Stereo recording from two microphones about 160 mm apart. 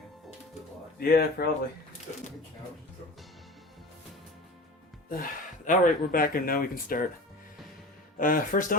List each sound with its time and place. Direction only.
0.9 s speech: 75° left (ahead or behind)
5.0 s speech: 60° left (ahead or behind)
8.2 s speech: 60° left (ahead or behind)